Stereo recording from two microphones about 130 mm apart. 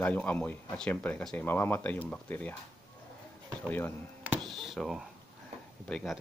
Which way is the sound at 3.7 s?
15° left (ahead or behind).